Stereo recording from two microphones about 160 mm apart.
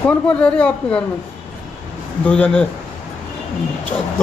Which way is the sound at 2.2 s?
10° left (ahead or behind).